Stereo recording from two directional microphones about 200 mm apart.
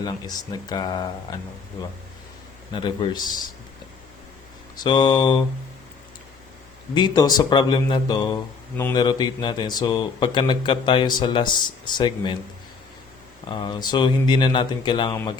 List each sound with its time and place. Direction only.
0.0 s speech: 20° left (ahead or behind)
2.7 s speech: 25° left (ahead or behind)
4.8 s speech: 20° left (ahead or behind)
6.9 s speech: 20° left (ahead or behind)
13.5 s speech: 20° left (ahead or behind)